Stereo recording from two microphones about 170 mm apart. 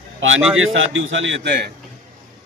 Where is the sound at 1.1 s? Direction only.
90° right.